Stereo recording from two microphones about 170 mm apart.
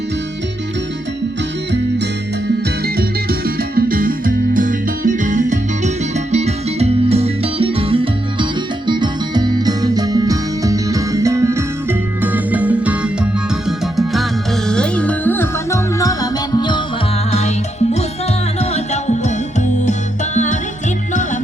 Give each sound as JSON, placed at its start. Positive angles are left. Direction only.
{"t": 2.8, "sound": "music", "side_deg": -65}
{"t": 17.3, "sound": "music", "side_deg": 40}